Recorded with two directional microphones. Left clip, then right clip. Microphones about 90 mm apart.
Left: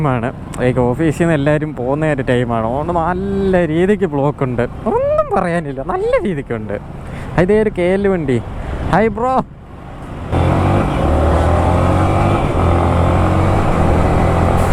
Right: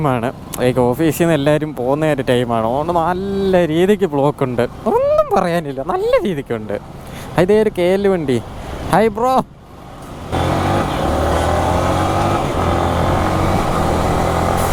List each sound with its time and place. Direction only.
0.0 s speech: 35° right (ahead or behind)
10.3 s vehicle: 30° right (ahead or behind)